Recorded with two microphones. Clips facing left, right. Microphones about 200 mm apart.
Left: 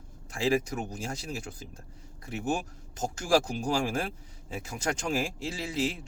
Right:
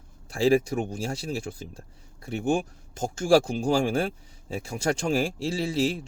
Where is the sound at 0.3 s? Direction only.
35° right (ahead or behind).